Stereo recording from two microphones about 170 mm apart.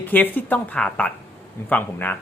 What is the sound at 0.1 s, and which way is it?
Speech, 10° left (ahead or behind).